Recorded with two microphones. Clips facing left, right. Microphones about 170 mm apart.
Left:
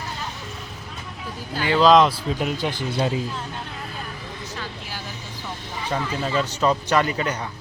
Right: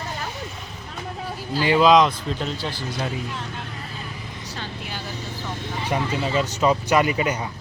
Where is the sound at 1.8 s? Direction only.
Centre (ahead or behind); by 2.8 s 15° left (ahead or behind).